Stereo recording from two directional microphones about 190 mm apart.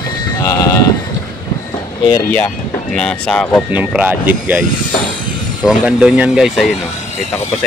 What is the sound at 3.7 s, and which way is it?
Speech, 10° right (ahead or behind).